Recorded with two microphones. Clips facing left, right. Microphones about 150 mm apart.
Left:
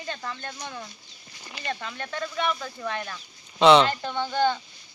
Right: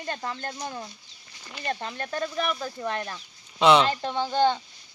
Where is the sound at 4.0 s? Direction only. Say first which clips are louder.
Right 2 dB; 30° right (ahead or behind).